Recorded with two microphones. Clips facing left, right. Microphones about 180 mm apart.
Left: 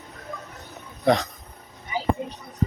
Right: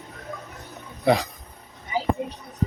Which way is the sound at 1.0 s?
10° right (ahead or behind).